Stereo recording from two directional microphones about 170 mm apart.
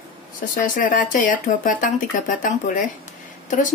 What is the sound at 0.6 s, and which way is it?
Speech, 50° left (ahead or behind).